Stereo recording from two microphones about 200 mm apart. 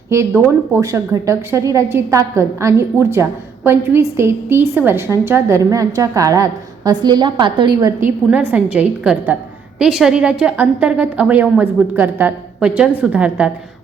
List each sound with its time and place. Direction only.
0.1 s a woman's voice: 10° right (ahead or behind)
8.3 s a woman's voice: 5° right (ahead or behind)